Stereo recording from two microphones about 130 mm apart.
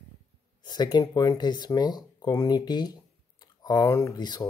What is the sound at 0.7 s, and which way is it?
Speech, 35° left (ahead or behind).